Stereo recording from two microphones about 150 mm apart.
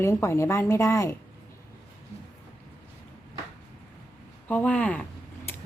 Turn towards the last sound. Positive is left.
turn(degrees=10)  # may be behind; listen again after turning